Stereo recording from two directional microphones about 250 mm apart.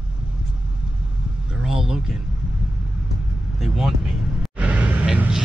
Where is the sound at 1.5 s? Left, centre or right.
Centre.